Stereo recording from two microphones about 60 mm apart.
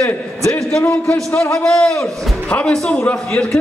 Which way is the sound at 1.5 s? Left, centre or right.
Centre.